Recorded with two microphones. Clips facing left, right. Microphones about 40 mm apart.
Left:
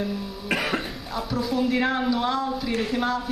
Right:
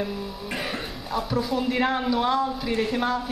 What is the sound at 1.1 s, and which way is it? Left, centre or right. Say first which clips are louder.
A woman's voice: right 1 dB; centre.